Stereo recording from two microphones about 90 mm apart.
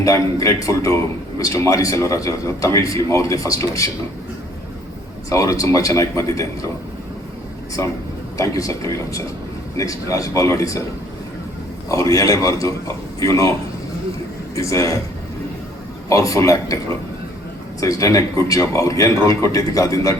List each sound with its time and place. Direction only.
0.0 s speech: 40° left (ahead or behind)
5.3 s speech: 40° left (ahead or behind)
7.8 s speech: 35° left (ahead or behind)
11.9 s speech: 40° left (ahead or behind)
14.5 s speech: 35° left (ahead or behind)
16.0 s speech: 40° left (ahead or behind)